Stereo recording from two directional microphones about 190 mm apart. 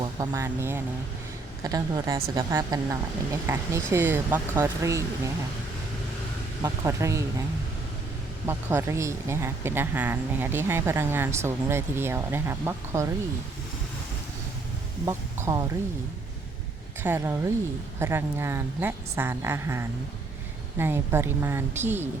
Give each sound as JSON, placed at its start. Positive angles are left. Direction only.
{"t": 0.0, "sound": "a woman's voice", "side_deg": -15}
{"t": 6.6, "sound": "speech", "side_deg": -15}
{"t": 8.4, "sound": "speech", "side_deg": -15}
{"t": 15.0, "sound": "speech", "side_deg": -20}
{"t": 17.0, "sound": "speech", "side_deg": -10}